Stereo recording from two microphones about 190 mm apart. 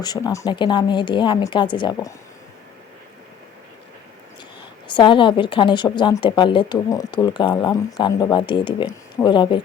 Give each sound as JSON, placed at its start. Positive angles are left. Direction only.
{"t": 0.0, "sound": "a woman's voice", "side_deg": 20}
{"t": 4.9, "sound": "a woman's voice", "side_deg": 25}